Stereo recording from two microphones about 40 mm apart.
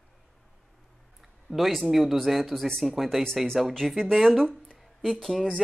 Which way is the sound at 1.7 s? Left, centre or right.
Centre.